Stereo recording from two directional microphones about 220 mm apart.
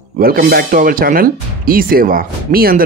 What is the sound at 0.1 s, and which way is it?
Speech, 40° right (ahead or behind).